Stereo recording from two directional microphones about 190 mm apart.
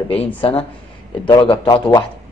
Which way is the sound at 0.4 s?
30° left (ahead or behind).